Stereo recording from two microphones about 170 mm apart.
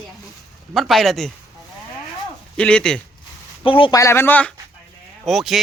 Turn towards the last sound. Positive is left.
turn(degrees=0)  # may be behind; listen again after turning